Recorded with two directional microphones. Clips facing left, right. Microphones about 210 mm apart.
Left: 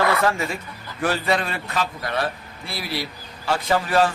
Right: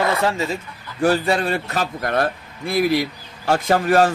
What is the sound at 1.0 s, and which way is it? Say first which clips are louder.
A man's voice: right 5 dB; 30° right (ahead or behind).